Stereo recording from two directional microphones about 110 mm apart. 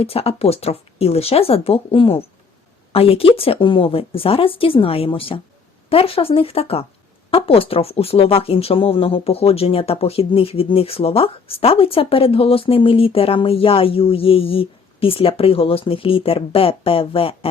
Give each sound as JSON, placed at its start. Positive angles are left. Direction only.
{"t": 0.0, "sound": "speech", "side_deg": 65}